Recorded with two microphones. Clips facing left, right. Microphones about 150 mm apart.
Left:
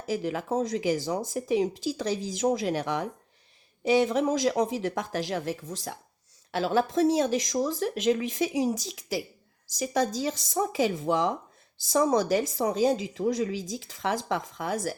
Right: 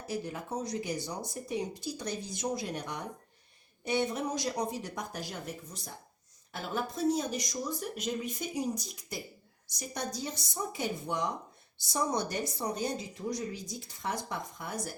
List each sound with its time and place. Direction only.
0.0 s speech: 90° left